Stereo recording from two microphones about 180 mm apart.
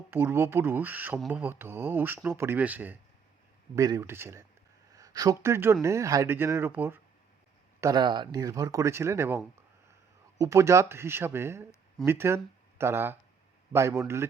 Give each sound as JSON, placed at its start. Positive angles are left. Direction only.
{"t": 0.1, "sound": "speech", "side_deg": -15}